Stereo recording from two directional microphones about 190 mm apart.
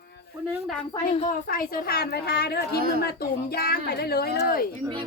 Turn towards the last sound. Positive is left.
turn(degrees=55)  # may be behind; listen again after turning